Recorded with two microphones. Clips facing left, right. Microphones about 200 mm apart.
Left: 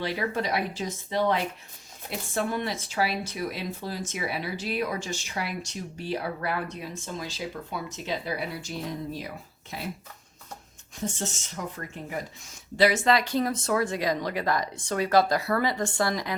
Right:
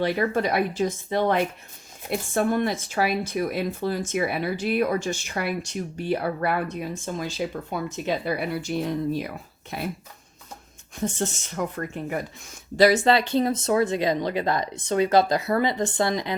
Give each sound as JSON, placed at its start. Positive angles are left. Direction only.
{"t": 0.0, "sound": "speech", "side_deg": -50}
{"t": 10.9, "sound": "speech", "side_deg": -55}
{"t": 13.1, "sound": "speech", "side_deg": -25}